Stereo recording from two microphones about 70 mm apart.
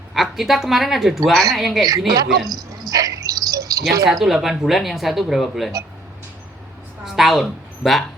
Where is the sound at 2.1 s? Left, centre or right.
Right.